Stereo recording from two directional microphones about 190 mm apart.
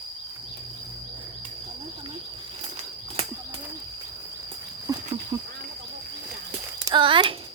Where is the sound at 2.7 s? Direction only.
30° right (ahead or behind).